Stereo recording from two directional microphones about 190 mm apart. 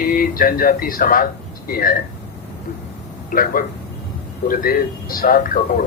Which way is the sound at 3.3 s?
45° left (ahead or behind).